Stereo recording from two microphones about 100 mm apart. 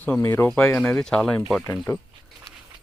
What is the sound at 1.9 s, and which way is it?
Speech, 30° left (ahead or behind).